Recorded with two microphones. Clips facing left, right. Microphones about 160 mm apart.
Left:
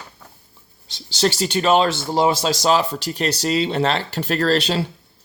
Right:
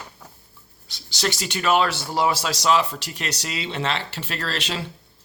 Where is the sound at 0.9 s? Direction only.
30° left (ahead or behind).